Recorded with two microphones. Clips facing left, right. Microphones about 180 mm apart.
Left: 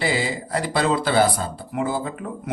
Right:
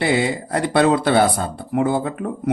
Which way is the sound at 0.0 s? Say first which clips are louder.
Right 5 dB; 60° right (ahead or behind).